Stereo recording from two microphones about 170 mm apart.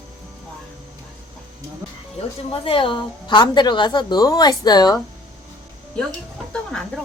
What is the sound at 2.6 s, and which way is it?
A woman's voice, 30° left (ahead or behind).